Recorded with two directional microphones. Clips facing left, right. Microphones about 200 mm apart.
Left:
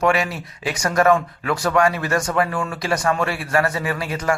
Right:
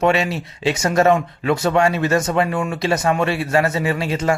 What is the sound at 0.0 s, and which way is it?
Speech, 25° right (ahead or behind).